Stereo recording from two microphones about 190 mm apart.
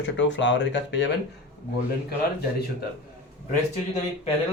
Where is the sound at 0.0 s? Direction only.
70° left (ahead or behind).